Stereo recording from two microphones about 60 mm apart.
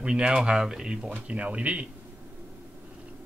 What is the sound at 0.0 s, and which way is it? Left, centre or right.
Speech, centre.